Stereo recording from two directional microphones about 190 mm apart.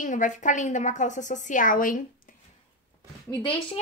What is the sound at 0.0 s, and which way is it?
A woman's voice, 40° left (ahead or behind).